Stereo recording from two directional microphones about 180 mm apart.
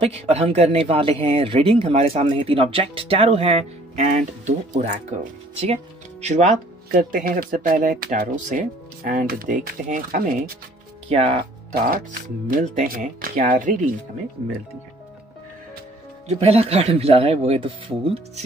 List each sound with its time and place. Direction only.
0.0 s speech: 35° right (ahead or behind)
11.1 s speech: 35° right (ahead or behind)
11.7 s speech: 50° right (ahead or behind)
16.3 s speech: 35° right (ahead or behind)